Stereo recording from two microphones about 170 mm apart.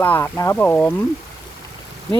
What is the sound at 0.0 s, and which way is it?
Speech, 15° left (ahead or behind).